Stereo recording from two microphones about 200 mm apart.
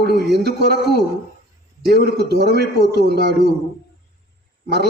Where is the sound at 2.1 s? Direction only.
55° right (ahead or behind).